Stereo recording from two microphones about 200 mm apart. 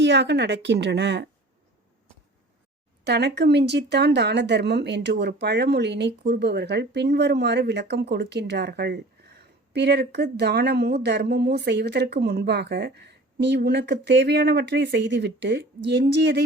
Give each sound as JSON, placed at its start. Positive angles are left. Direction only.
{"t": 0.0, "sound": "speech", "side_deg": -60}
{"t": 3.0, "sound": "speech", "side_deg": -55}